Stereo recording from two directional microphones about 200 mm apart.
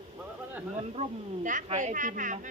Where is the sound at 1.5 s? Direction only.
35° right (ahead or behind).